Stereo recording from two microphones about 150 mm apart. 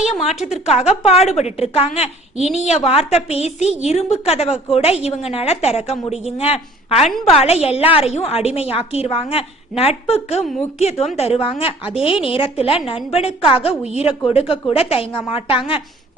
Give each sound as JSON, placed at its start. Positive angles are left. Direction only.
{"t": 0.4, "sound": "a woman's voice", "side_deg": 50}